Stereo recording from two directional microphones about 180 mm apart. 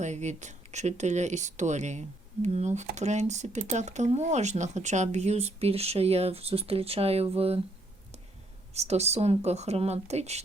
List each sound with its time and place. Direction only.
0.0 s speech: 40° right (ahead or behind)
8.7 s speech: 35° right (ahead or behind)